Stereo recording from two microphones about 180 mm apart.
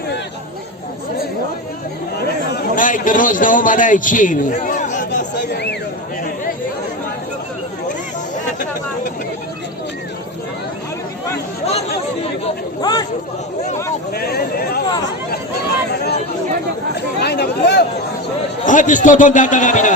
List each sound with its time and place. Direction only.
2.1 s a man's voice: 55° left (ahead or behind)
5.3 s a sound: 70° left (ahead or behind)
12.8 s speech: 20° left (ahead or behind)
14.1 s speech: 60° left (ahead or behind)
16.9 s speech: 65° left (ahead or behind)
18.6 s a man's voice: 45° left (ahead or behind)